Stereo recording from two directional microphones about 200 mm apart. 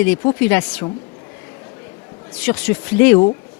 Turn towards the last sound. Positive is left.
turn(degrees=10)  # may be behind; listen again after turning